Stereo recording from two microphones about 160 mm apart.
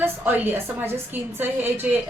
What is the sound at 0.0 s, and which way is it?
Speech, 10° right (ahead or behind).